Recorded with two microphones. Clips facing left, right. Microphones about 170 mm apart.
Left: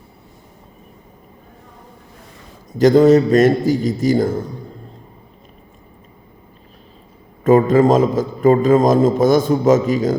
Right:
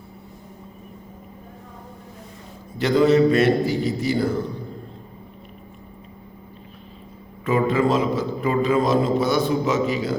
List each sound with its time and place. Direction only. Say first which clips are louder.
2.7 s a man's voice: left 6 dB; 45° left (ahead or behind)
7.4 s a man's voice: left 8 dB; 45° left (ahead or behind)